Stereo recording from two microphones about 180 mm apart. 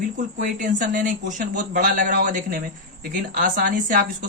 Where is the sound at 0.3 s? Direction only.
45° right (ahead or behind).